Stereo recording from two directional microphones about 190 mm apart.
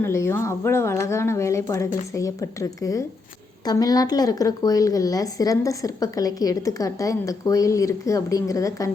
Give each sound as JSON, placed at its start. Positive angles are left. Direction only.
{"t": 0.0, "sound": "speech", "side_deg": 15}